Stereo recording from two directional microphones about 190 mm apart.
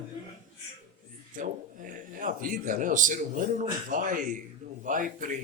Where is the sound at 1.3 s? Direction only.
45° right (ahead or behind).